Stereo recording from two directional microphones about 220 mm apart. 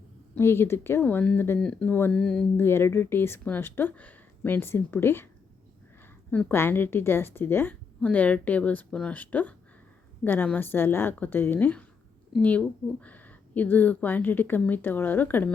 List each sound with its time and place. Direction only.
0.3 s speech: 10° left (ahead or behind)
6.3 s speech: 10° left (ahead or behind)